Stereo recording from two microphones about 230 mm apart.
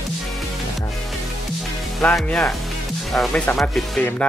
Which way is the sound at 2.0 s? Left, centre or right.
Centre.